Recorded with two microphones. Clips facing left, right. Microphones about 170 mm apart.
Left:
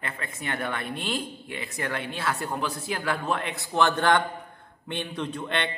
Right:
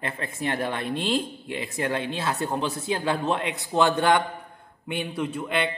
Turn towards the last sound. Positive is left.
turn(degrees=-5)  # may be behind; listen again after turning